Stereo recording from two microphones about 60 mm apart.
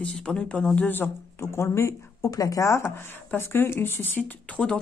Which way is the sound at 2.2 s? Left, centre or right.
Left.